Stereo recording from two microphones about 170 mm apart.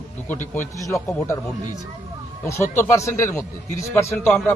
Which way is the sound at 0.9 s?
20° left (ahead or behind).